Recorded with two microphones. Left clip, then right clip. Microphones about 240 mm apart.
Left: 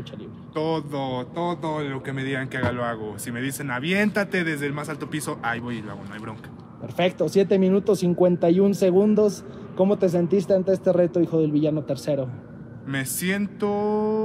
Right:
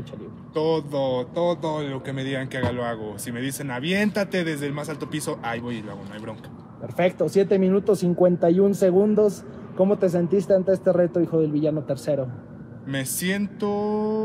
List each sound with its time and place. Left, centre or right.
0.6 s speech: centre
7.0 s speech: left
12.8 s speech: centre